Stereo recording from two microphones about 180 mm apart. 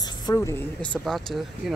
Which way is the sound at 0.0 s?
20° left (ahead or behind).